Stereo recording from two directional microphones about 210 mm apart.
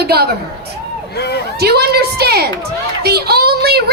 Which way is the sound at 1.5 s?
50° right (ahead or behind).